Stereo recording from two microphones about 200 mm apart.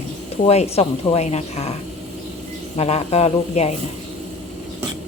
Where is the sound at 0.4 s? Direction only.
30° left (ahead or behind).